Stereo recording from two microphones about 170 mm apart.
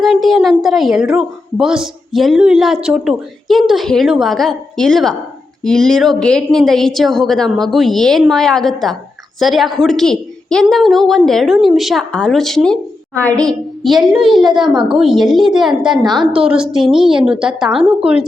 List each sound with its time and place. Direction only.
0.0 s a woman's voice: centre (ahead or behind)
15.9 s a woman's voice: 25° right (ahead or behind)
16.3 s a woman's voice: 5° right (ahead or behind)